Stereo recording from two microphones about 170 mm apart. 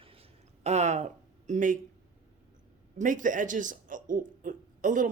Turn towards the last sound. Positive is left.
turn(degrees=-50)  # may be behind; listen again after turning